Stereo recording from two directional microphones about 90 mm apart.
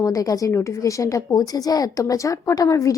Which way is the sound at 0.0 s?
40° left (ahead or behind).